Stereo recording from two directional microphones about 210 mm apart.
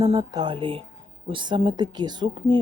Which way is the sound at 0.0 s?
20° right (ahead or behind).